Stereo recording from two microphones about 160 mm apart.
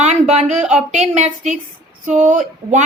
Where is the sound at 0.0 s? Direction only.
45° right (ahead or behind).